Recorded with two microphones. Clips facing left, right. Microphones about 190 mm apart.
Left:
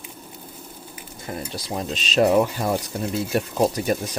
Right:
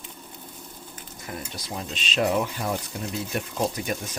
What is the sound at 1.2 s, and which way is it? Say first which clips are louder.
Speech: left 5 dB; 35° left (ahead or behind).